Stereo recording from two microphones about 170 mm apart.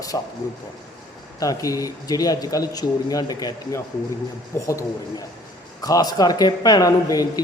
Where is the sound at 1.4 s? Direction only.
20° left (ahead or behind).